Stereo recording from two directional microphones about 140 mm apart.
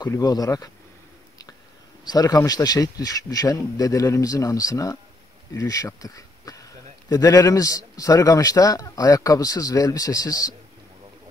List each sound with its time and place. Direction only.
0.0 s a man's voice: 25° left (ahead or behind)
2.0 s a man's voice: 25° left (ahead or behind)